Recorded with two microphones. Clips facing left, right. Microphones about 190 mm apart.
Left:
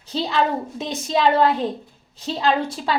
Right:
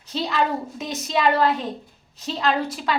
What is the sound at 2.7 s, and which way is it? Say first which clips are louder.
Speech: left 2 dB; 30° left (ahead or behind).